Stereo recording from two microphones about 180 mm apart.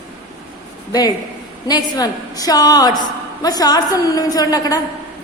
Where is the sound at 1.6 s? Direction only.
20° left (ahead or behind).